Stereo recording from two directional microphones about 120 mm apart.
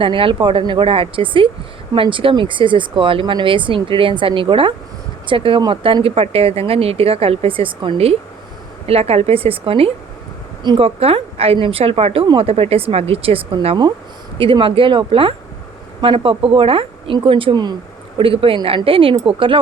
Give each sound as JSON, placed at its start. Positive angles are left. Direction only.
{"t": 0.0, "sound": "a woman's voice", "side_deg": -50}
{"t": 18.2, "sound": "speech", "side_deg": -50}